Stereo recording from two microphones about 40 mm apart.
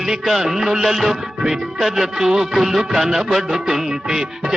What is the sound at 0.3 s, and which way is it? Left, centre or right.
Music, centre.